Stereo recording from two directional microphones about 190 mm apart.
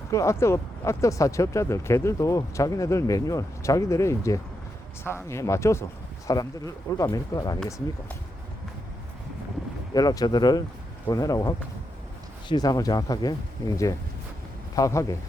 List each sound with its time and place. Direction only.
0.1 s speech: 15° left (ahead or behind)
9.9 s speech: 20° left (ahead or behind)
14.8 s speech: 15° left (ahead or behind)